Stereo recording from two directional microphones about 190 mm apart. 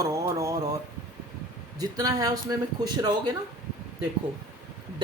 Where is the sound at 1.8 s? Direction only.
20° right (ahead or behind).